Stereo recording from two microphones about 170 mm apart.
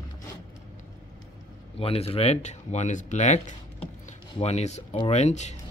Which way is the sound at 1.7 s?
35° left (ahead or behind).